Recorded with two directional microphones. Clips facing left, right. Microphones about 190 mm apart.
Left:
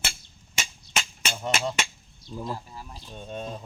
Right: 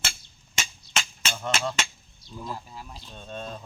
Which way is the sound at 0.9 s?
15° left (ahead or behind).